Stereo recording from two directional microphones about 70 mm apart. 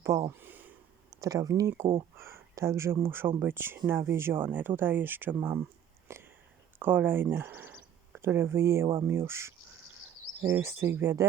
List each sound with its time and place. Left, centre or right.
0.0 s speech: right
0.3 s a sound: right
1.1 s speech: right
1.8 s speech: right
6.1 s a sound: right
6.7 s speech: right